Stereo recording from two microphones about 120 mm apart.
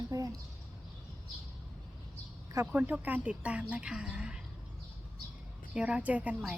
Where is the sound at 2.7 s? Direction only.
10° right (ahead or behind).